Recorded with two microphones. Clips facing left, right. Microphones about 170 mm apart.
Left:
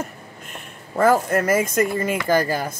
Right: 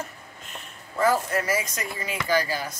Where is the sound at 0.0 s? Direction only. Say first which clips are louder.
Left 5 dB; 50° left (ahead or behind).